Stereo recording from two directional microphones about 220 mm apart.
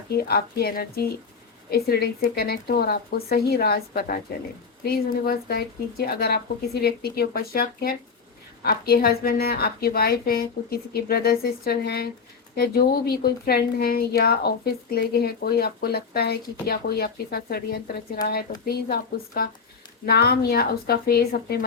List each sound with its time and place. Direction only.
0.2 s a woman's voice: 45° left (ahead or behind)